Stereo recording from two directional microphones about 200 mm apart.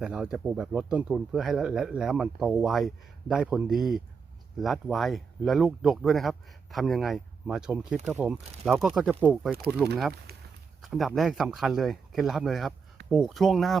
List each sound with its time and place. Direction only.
0.0 s speech: 5° right (ahead or behind)
10.3 s a sound: 50° right (ahead or behind)
10.8 s speech: centre (ahead or behind)